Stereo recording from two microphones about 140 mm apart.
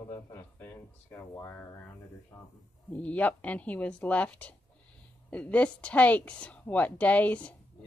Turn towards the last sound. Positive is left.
turn(degrees=10)  # may be behind; listen again after turning